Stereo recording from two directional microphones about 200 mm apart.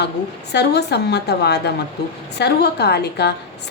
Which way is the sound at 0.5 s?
55° left (ahead or behind).